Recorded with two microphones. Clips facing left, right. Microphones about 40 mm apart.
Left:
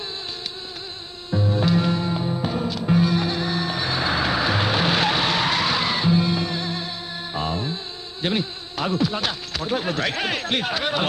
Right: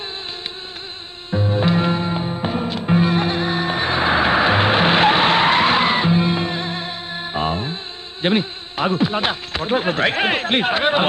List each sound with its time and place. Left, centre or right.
1.3 s music: right
8.2 s speech: right